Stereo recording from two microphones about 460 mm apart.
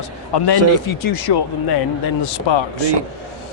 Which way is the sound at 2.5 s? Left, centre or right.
Left.